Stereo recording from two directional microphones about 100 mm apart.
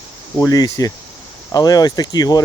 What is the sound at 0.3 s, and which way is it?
Speech, 35° left (ahead or behind).